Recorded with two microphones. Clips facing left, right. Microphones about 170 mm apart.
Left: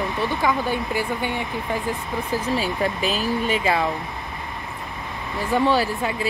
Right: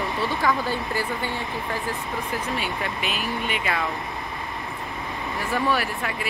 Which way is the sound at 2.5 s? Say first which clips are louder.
Left 5 dB; 35° left (ahead or behind).